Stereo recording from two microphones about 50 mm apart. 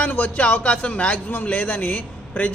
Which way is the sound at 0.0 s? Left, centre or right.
Left.